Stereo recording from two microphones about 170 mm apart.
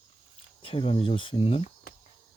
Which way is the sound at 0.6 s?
30° left (ahead or behind).